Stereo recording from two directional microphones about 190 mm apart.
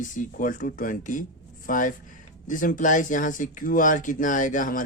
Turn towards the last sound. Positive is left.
turn(degrees=45)  # may be behind; listen again after turning